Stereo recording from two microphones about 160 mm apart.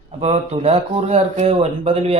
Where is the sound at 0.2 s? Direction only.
40° right (ahead or behind).